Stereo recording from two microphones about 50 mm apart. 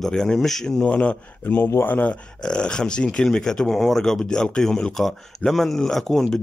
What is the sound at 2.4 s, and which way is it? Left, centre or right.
Speech, centre.